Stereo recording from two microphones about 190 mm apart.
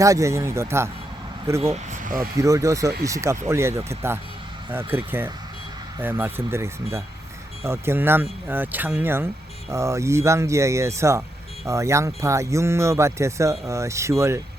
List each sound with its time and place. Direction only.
0.0 s speech: 15° right (ahead or behind)
1.7 s speech: 40° right (ahead or behind)
2.4 s speech: 15° right (ahead or behind)